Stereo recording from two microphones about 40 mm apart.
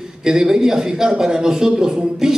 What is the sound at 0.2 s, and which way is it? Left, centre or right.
A man's voice, centre.